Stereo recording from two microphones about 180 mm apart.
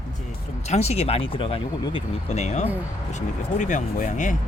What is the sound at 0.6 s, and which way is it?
Speech, 40° left (ahead or behind).